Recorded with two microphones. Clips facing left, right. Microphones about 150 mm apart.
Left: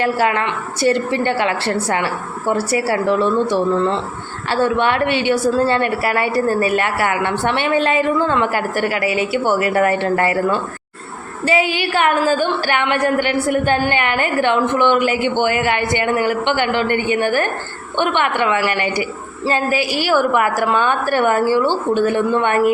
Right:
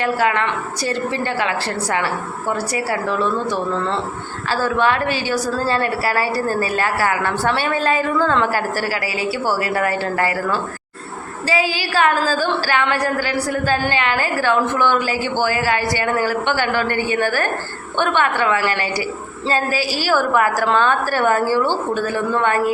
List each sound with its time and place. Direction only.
0.0 s a woman's voice: 30° left (ahead or behind)
8.5 s a woman's voice: 35° right (ahead or behind)
9.0 s a woman's voice: 20° left (ahead or behind)
11.9 s a woman's voice: 20° left (ahead or behind)